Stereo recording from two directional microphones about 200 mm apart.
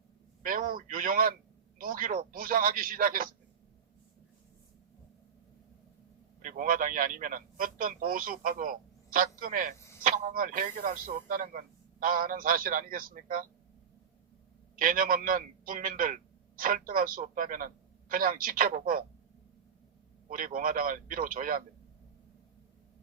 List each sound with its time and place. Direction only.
0.4 s a man's voice: 45° right (ahead or behind)
6.4 s a man's voice: 40° right (ahead or behind)
9.7 s a sound: 15° left (ahead or behind)
10.0 s a man's voice: 40° right (ahead or behind)
14.8 s a man's voice: 45° right (ahead or behind)
20.2 s a man's voice: 45° right (ahead or behind)